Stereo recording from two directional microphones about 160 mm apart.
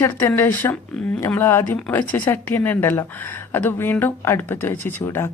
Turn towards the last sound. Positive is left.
turn(degrees=15)  # may be behind; listen again after turning